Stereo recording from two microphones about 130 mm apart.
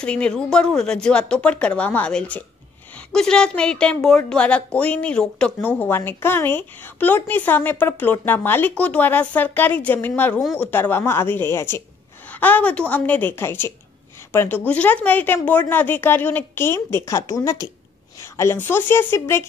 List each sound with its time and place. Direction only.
0.0 s a woman's voice: 10° left (ahead or behind)